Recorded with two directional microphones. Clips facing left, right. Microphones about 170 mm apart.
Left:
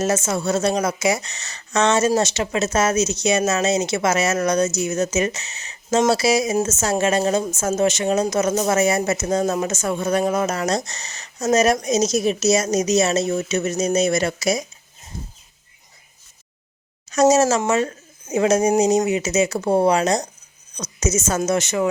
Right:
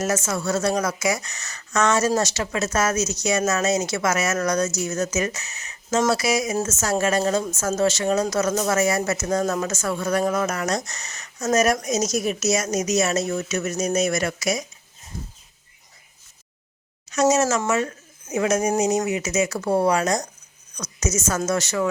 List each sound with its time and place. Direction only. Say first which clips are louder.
0.0 s speech: left 3 dB; 25° left (ahead or behind)
17.1 s speech: left 4 dB; 35° left (ahead or behind); by 21.8 s 20° left (ahead or behind)